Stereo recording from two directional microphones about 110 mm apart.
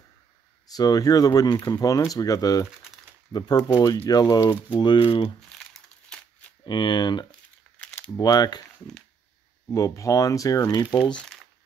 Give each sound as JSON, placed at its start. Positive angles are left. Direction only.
{"t": 0.7, "sound": "speech", "side_deg": 35}
{"t": 5.5, "sound": "crumpling", "side_deg": 5}
{"t": 6.6, "sound": "speech", "side_deg": 45}
{"t": 9.7, "sound": "speech", "side_deg": 30}
{"t": 11.1, "sound": "crumpling", "side_deg": 5}